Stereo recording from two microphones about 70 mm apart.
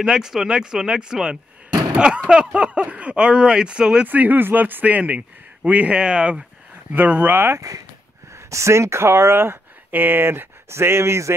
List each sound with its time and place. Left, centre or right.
0.0 s speech: centre
4.1 s a man's voice: right
6.9 s a man's voice: right
8.5 s speech: right